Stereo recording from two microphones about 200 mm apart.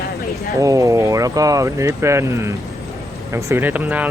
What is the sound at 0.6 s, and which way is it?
Speech, 15° right (ahead or behind).